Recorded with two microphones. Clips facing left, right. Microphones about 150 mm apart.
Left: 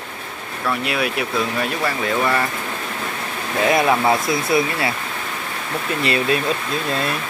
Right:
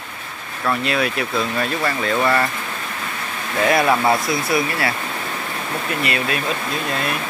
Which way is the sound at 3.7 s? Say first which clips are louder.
Even; 20° left (ahead or behind).